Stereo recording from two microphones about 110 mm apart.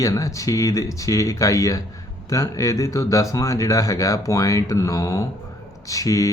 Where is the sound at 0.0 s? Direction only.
30° left (ahead or behind).